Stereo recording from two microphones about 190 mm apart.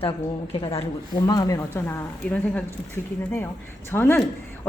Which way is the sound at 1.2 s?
20° left (ahead or behind).